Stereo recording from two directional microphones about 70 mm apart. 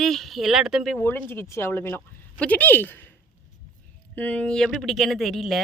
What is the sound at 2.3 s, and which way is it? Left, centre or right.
Speech, left.